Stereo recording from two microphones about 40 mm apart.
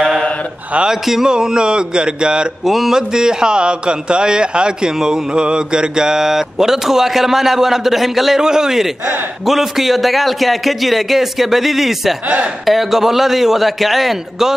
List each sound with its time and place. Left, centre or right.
0.8 s a man's voice: centre
2.6 s a man's voice: centre
3.2 s a man's voice: centre